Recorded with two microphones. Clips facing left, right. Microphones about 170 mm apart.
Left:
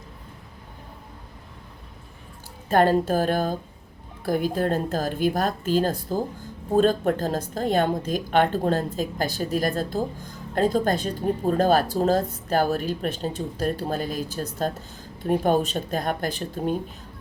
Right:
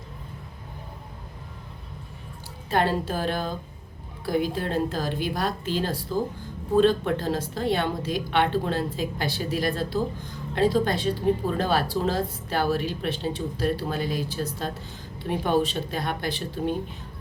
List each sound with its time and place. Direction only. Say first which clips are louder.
2.6 s a woman's voice: left 5 dB; 45° left (ahead or behind)